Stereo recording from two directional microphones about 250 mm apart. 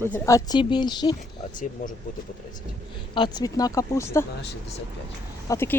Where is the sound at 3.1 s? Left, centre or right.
Centre.